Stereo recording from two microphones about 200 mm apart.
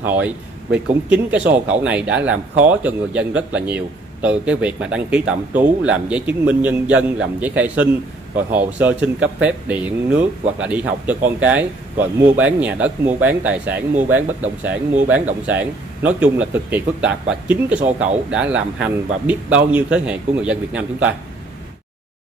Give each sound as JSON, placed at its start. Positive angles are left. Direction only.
{"t": 0.0, "sound": "speech", "side_deg": -10}